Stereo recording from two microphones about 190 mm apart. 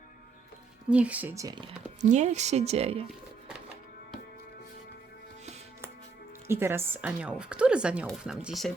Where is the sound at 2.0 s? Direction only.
40° right (ahead or behind).